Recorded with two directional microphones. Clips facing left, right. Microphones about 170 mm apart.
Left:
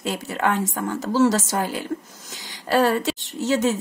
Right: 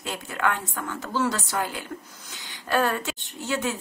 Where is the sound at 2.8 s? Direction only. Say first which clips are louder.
Left 7 dB; 35° left (ahead or behind).